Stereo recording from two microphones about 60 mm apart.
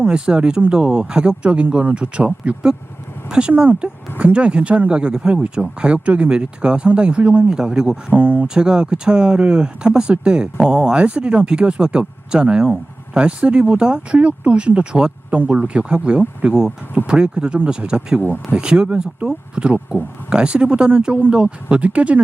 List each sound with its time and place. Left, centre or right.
0.0 s speech: centre
3.5 s speech: right; by 7.9 s centre
8.1 s speech: right
8.4 s speech: centre